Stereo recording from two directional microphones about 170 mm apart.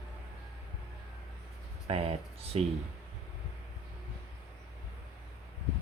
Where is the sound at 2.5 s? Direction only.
35° right (ahead or behind).